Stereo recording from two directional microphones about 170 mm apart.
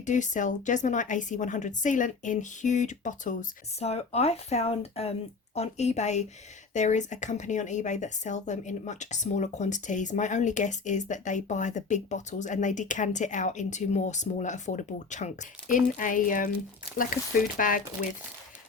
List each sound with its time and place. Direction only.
0.0 s speech: 45° left (ahead or behind)
3.8 s speech: 40° left (ahead or behind)
17.6 s speech: 50° left (ahead or behind)